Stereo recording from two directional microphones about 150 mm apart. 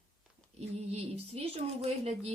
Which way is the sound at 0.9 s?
45° right (ahead or behind).